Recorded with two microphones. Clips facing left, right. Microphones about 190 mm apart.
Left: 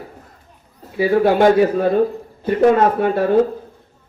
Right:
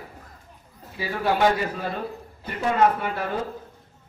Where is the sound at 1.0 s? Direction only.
55° left (ahead or behind).